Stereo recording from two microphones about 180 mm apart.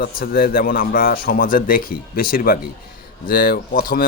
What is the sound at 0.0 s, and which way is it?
A man's voice, 55° left (ahead or behind).